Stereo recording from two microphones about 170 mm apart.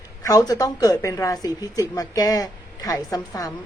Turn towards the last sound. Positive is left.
turn(degrees=20)  # may be behind; listen again after turning